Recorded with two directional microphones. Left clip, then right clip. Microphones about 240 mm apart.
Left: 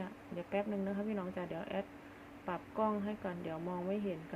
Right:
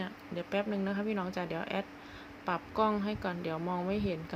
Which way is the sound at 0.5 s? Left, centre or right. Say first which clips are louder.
Right 4 dB; right.